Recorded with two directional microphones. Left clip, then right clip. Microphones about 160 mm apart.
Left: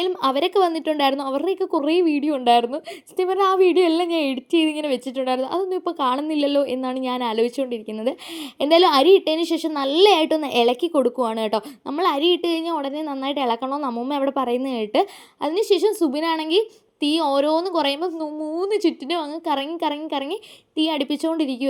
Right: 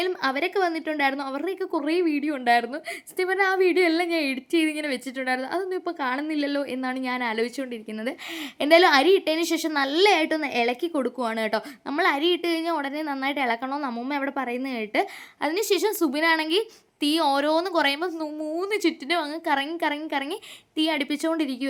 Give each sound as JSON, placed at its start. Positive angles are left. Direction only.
{"t": 0.2, "sound": "speech", "side_deg": 20}
{"t": 8.5, "sound": "speech", "side_deg": 5}
{"t": 15.4, "sound": "a woman's voice", "side_deg": 5}